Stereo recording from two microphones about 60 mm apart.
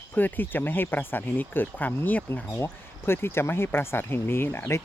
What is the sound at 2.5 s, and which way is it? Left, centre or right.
Speech, left.